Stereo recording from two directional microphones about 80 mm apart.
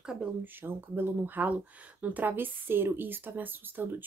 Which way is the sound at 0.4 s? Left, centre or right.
Right.